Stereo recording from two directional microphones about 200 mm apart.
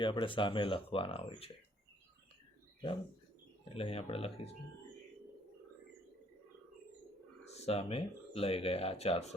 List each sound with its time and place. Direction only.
0.0 s speech: 25° left (ahead or behind)
3.8 s speech: 30° left (ahead or behind)
7.5 s speech: 30° left (ahead or behind)